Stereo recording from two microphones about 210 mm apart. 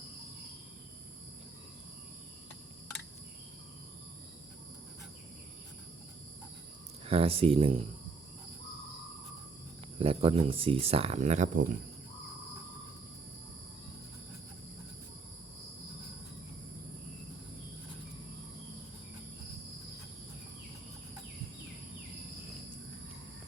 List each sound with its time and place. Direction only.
7.0 s speech: 30° right (ahead or behind)
10.0 s speech: 25° right (ahead or behind)